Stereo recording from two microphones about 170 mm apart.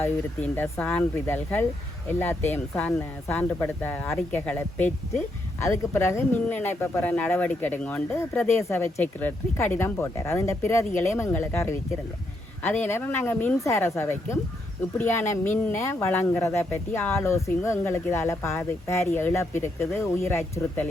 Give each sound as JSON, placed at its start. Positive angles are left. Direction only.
{"t": 0.0, "sound": "speech", "side_deg": 10}